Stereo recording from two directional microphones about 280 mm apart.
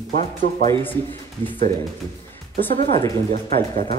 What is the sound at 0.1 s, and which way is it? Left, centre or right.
Speech, right.